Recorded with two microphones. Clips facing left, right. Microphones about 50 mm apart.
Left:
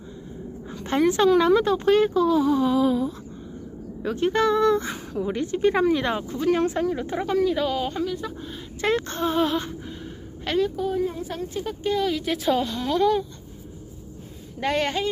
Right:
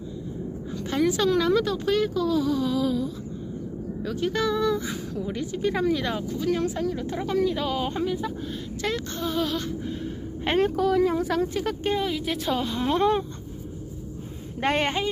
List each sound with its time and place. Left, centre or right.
0.8 s a woman's voice: left
7.3 s speech: centre
8.8 s speech: left
10.5 s a woman's voice: right
10.8 s speech: right
12.0 s speech: centre
12.7 s speech: right
14.6 s a woman's voice: right